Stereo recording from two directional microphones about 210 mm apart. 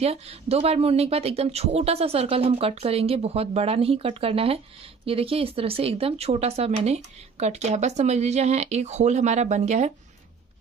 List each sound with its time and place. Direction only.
0.0 s speech: 30° right (ahead or behind)